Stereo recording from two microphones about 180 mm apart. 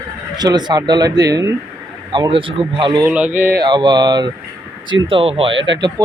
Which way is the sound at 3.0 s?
10° right (ahead or behind).